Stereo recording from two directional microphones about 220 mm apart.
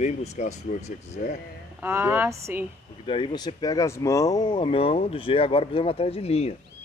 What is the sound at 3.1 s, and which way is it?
Speech, 20° left (ahead or behind).